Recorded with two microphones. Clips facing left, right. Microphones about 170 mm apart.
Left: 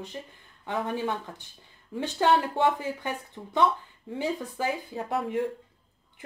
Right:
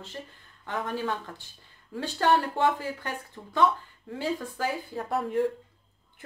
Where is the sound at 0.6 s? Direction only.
20° left (ahead or behind).